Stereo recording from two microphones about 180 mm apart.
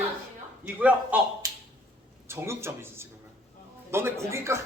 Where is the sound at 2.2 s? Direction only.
15° right (ahead or behind).